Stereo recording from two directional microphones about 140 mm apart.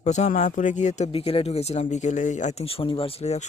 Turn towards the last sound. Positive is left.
turn(degrees=50)  # may be behind; listen again after turning